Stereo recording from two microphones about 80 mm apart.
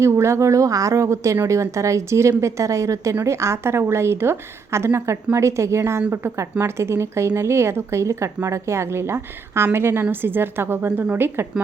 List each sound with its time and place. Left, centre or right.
0.0 s a woman's voice: right